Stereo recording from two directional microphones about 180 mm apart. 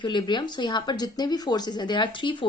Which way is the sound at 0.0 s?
25° left (ahead or behind).